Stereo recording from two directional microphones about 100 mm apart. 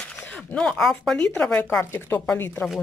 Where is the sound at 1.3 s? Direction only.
15° left (ahead or behind).